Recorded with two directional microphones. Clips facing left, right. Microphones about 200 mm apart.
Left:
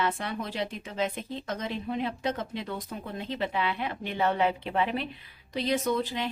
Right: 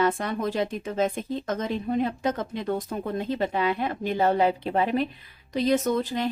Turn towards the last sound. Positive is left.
turn(degrees=-45)  # may be behind; listen again after turning